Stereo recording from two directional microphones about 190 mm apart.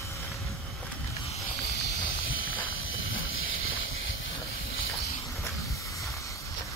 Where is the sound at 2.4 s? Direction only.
90° left.